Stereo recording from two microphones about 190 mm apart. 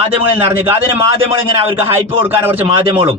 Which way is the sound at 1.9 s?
10° right (ahead or behind).